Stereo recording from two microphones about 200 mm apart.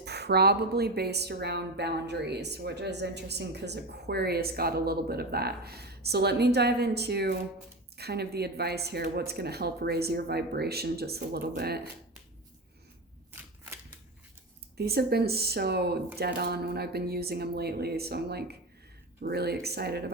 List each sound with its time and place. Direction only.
0.0 s a woman's voice: 55° right (ahead or behind)
14.8 s a woman's voice: 50° right (ahead or behind)